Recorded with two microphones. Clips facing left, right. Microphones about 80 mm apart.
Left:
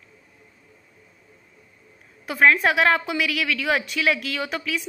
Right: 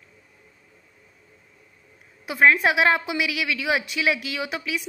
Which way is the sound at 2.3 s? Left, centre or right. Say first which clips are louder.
Even; centre.